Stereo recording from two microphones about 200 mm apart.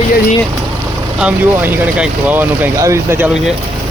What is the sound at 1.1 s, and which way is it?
Speech, 5° right (ahead or behind).